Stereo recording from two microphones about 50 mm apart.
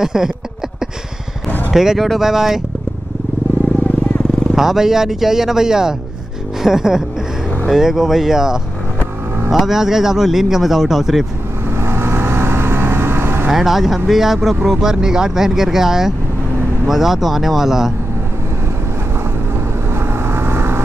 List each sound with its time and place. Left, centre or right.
0.0 s speech: centre
1.7 s speech: centre
2.2 s speech: centre
4.6 s speech: centre
11.7 s vehicle: right
13.5 s speech: centre
19.9 s vehicle: right